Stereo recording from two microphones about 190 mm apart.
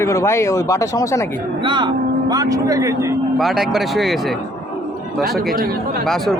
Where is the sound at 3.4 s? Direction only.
Centre (ahead or behind).